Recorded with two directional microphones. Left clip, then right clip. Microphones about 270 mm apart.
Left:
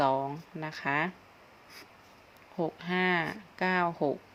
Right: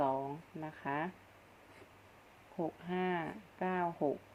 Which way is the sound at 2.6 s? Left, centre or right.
Left.